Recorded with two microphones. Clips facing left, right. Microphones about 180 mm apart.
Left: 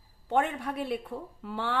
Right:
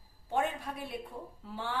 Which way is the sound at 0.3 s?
70° left (ahead or behind).